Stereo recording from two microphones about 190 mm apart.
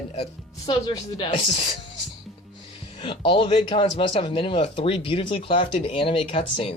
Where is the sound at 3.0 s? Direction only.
25° left (ahead or behind).